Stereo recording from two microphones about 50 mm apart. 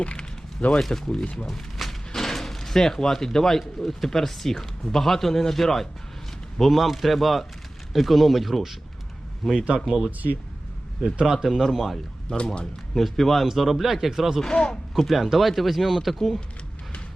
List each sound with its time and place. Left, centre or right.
0.0 s a sound: left
0.8 s a man's voice: centre
1.4 s a sound: centre
3.6 s a man's voice: centre
9.6 s speech: centre
11.2 s speech: centre
11.4 s a man's voice: centre
14.4 s speech: centre
14.9 s a man's voice: centre